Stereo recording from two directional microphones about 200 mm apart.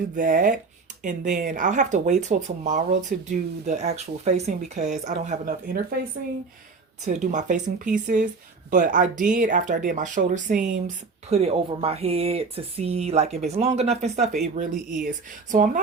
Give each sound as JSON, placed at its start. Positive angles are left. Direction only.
{"t": 0.2, "sound": "speech", "side_deg": -45}
{"t": 7.0, "sound": "speech", "side_deg": -35}